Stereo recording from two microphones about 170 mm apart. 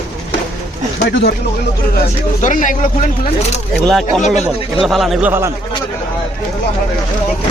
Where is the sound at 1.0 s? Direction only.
75° left (ahead or behind).